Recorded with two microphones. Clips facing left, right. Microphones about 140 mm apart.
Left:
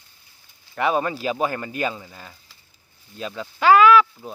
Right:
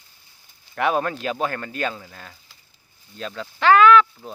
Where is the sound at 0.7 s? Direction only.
Centre (ahead or behind).